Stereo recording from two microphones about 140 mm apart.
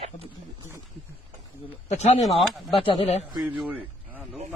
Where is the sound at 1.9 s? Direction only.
55° left (ahead or behind).